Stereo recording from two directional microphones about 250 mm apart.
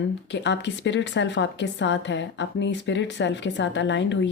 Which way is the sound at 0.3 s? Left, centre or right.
Left.